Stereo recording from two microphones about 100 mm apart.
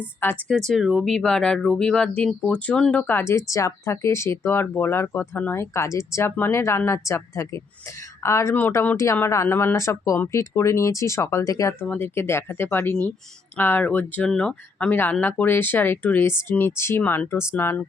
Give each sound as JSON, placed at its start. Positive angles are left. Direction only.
{"t": 0.2, "sound": "speech", "side_deg": 20}
{"t": 0.7, "sound": "speech", "side_deg": -5}
{"t": 11.8, "sound": "speech", "side_deg": 20}
{"t": 14.3, "sound": "speech", "side_deg": 5}